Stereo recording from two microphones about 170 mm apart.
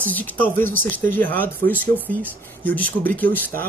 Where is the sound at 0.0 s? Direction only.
10° left (ahead or behind).